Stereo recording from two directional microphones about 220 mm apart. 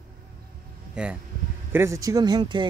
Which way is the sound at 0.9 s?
5° right (ahead or behind).